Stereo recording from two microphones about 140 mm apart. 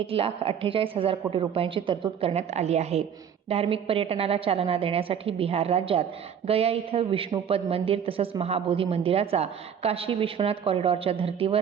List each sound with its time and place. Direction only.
0.1 s a man's voice: 45° right (ahead or behind)